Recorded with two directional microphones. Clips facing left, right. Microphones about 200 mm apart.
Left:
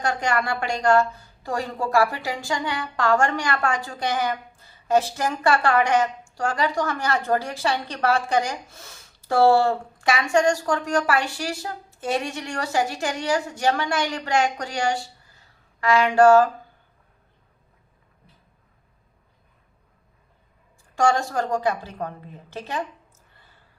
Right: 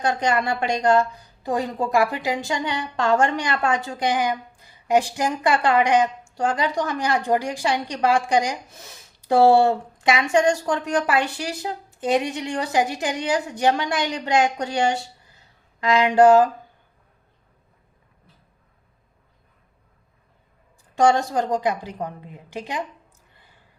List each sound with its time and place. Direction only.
0.0 s a woman's voice: 20° right (ahead or behind)
20.9 s a woman's voice: 20° right (ahead or behind)